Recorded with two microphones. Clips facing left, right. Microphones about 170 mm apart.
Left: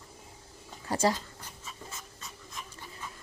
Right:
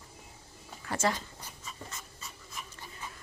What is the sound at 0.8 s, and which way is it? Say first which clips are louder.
Speech: left 3 dB; 35° left (ahead or behind).